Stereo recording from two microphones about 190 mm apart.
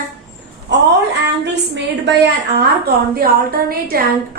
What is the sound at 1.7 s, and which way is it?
A woman's voice, 65° right (ahead or behind).